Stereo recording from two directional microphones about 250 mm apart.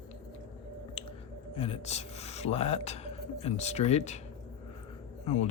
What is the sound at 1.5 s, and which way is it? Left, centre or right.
Speech, left.